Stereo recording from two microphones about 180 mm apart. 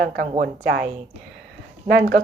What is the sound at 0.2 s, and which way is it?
Speech, 55° right (ahead or behind).